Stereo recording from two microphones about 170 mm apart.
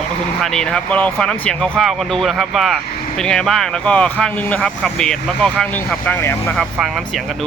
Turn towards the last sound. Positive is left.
turn(degrees=10)  # may be behind; listen again after turning